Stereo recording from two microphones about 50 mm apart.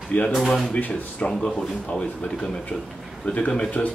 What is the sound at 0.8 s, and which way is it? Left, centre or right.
Speech, left.